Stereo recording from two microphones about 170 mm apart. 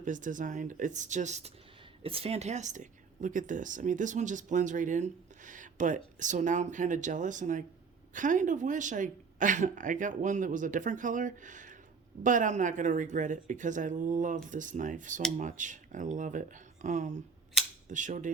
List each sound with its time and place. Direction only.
0.0 s speech: 50° right (ahead or behind)
17.8 s cap gun: 50° right (ahead or behind)